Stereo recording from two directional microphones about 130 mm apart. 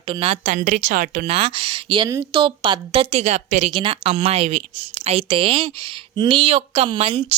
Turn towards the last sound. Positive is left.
turn(degrees=-45)  # may be behind; listen again after turning